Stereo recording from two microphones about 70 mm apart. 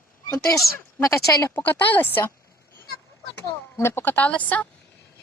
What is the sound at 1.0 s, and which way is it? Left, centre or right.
Speech, left.